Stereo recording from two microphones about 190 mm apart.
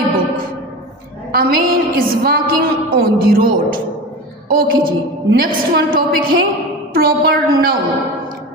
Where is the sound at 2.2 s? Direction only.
50° right (ahead or behind).